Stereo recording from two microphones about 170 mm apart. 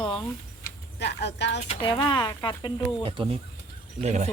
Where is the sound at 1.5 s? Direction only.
35° left (ahead or behind).